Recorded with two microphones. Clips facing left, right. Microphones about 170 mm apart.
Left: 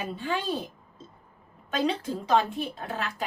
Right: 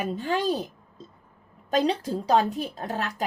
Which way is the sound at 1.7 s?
40° right (ahead or behind).